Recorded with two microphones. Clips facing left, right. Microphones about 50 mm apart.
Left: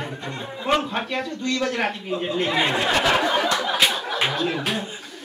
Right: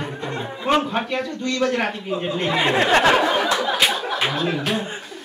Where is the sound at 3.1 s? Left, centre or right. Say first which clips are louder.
Right 3 dB; centre.